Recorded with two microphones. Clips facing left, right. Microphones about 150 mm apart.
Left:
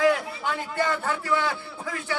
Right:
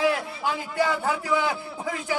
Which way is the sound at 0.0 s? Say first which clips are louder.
Left 2 dB; 5° right (ahead or behind).